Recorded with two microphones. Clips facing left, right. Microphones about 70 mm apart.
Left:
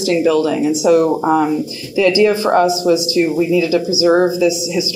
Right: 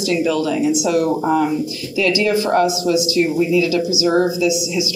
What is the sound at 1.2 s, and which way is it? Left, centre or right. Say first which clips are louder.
Speech: left 3 dB; left.